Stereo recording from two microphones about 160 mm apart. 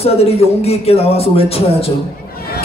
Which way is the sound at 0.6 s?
40° left (ahead or behind).